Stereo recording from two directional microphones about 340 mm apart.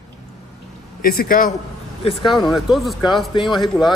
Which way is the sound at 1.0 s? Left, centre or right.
Left.